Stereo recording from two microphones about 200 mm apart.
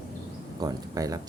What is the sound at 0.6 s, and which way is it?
Speech, 20° right (ahead or behind).